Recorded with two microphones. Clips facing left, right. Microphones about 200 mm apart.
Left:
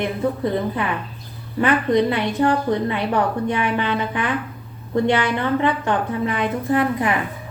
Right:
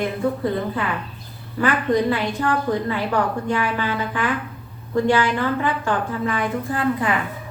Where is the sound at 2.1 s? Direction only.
20° left (ahead or behind).